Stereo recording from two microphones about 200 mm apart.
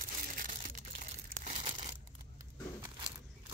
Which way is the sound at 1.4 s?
30° right (ahead or behind).